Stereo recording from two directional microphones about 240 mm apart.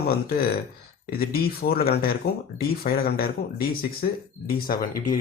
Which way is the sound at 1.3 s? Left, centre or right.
Left.